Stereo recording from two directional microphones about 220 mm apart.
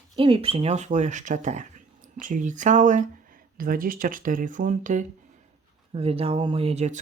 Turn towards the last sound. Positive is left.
turn(degrees=-30)  # may be behind; listen again after turning